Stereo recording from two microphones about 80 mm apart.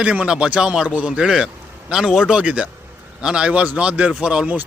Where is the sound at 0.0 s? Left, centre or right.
Centre.